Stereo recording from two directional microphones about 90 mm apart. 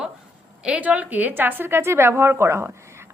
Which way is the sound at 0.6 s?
15° right (ahead or behind).